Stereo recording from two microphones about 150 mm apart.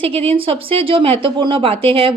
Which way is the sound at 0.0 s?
40° right (ahead or behind).